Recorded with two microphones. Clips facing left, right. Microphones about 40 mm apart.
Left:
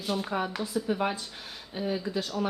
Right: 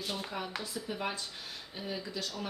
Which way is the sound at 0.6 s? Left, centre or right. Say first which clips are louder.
Left 8 dB; left.